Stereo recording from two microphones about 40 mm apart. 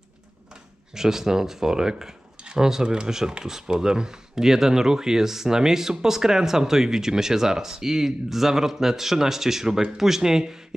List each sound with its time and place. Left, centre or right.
0.9 s speech: centre